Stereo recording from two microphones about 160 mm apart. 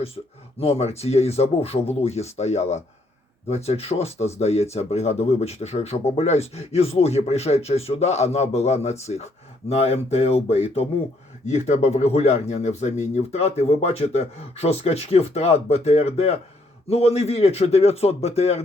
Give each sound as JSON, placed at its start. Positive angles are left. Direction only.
{"t": 0.6, "sound": "speech", "side_deg": 40}